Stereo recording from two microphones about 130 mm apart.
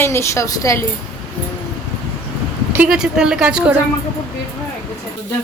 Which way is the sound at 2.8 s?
5° right (ahead or behind).